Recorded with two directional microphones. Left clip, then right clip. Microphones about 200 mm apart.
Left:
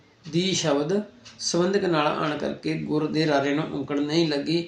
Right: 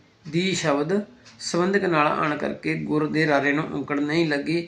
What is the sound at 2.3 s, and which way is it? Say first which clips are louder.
Speech: right 2 dB; 25° right (ahead or behind).